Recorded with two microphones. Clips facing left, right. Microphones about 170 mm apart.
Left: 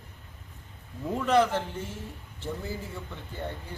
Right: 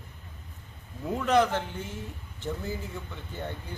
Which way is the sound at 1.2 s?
Centre (ahead or behind).